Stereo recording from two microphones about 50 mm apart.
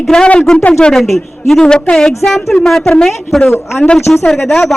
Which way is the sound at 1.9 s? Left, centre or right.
Centre.